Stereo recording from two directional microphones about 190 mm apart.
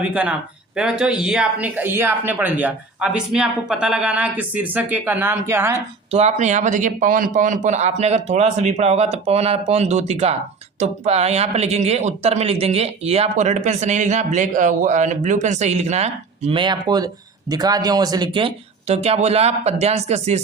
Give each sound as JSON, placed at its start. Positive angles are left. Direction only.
{"t": 0.0, "sound": "speech", "side_deg": -5}
{"t": 6.1, "sound": "speech", "side_deg": -35}